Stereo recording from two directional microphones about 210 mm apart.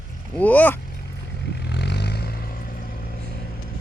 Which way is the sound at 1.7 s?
55° left (ahead or behind).